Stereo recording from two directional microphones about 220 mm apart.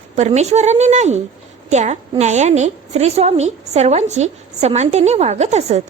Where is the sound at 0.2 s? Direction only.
30° right (ahead or behind).